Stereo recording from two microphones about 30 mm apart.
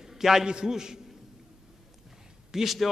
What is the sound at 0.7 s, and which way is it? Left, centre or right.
Speech, centre.